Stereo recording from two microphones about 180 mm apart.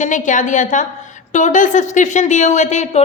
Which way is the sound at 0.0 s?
45° left (ahead or behind).